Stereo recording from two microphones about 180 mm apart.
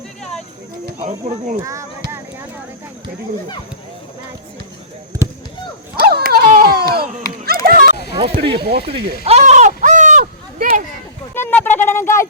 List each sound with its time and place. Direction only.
1.0 s speech: 40° right (ahead or behind)
1.6 s speech: 15° right (ahead or behind)
5.1 s basketball bounce: 20° right (ahead or behind)
6.0 s a sound: 60° right (ahead or behind)
8.1 s speech: 30° right (ahead or behind)
9.2 s a sound: 35° right (ahead or behind)
11.3 s speech: 10° left (ahead or behind)